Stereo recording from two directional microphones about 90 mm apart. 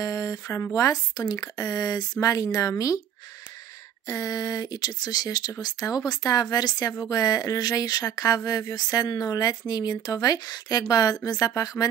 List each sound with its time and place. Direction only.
0.0 s speech: 40° left (ahead or behind)
4.1 s speech: 45° left (ahead or behind)